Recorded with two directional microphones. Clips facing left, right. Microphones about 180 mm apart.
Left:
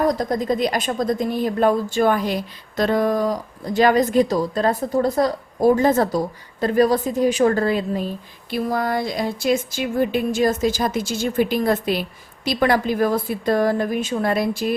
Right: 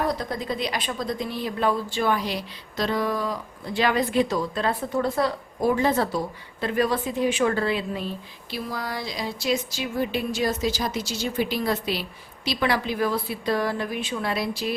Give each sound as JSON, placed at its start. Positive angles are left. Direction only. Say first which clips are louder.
{"t": 0.0, "sound": "a woman's voice", "louder": "left 7 dB", "side_deg": 45}